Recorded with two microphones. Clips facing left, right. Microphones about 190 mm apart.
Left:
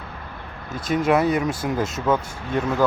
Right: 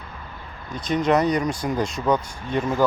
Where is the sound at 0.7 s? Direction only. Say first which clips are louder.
Left 1 dB; 5° left (ahead or behind).